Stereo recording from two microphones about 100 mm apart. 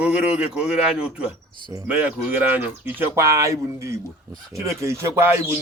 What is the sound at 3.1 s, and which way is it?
Speech, 30° right (ahead or behind).